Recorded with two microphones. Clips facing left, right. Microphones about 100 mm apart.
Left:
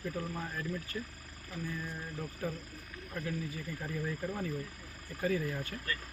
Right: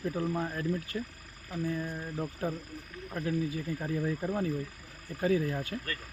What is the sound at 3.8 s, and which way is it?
Speech, 20° right (ahead or behind).